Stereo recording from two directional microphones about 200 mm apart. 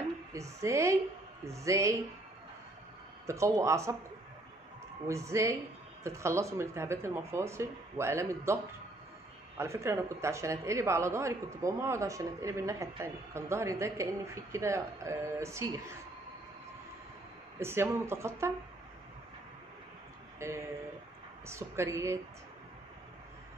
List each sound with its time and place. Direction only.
0.3 s a woman's voice: 15° right (ahead or behind)
3.3 s speech: 15° right (ahead or behind)
5.0 s speech: 15° right (ahead or behind)
9.6 s speech: 15° right (ahead or behind)
17.6 s speech: 10° right (ahead or behind)
20.3 s speech: 15° right (ahead or behind)